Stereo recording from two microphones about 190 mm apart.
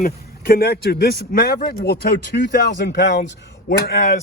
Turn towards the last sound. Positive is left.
turn(degrees=55)  # may be behind; listen again after turning